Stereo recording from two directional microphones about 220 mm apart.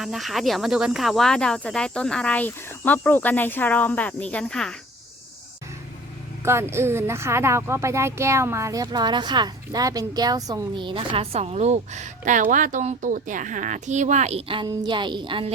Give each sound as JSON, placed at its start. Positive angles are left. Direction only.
{"t": 0.0, "sound": "speech", "side_deg": 0}
{"t": 6.4, "sound": "speech", "side_deg": -10}